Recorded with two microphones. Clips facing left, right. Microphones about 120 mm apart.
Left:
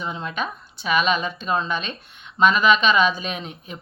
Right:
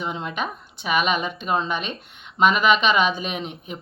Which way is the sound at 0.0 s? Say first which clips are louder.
Even; 20° right (ahead or behind).